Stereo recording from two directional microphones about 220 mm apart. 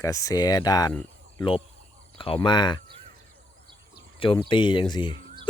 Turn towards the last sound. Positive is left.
turn(degrees=20)  # may be behind; listen again after turning